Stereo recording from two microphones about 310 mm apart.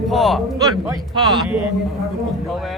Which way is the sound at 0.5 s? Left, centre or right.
Centre.